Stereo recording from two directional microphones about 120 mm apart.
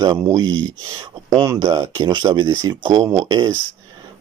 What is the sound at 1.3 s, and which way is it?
Speech, 35° right (ahead or behind).